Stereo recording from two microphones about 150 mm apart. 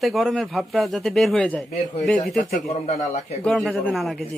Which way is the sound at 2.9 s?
50° left (ahead or behind).